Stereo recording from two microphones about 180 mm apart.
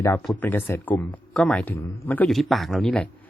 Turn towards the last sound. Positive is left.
turn(degrees=5)  # may be behind; listen again after turning